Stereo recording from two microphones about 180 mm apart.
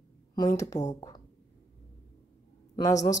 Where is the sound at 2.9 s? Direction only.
20° left (ahead or behind).